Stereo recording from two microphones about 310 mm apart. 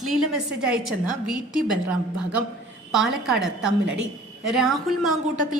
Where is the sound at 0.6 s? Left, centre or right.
Centre.